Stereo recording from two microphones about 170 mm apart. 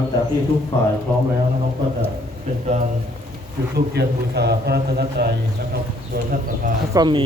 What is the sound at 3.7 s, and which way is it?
A man's voice, 75° right (ahead or behind).